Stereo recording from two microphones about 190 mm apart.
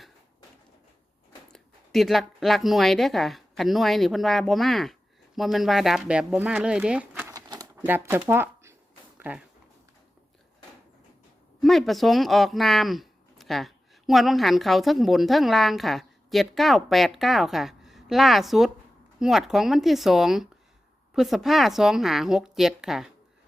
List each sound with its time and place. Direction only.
1.5 s speech: centre (ahead or behind)
7.3 s typewriter: 20° right (ahead or behind)
9.1 s a sound: 10° right (ahead or behind)
11.6 s speech: centre (ahead or behind)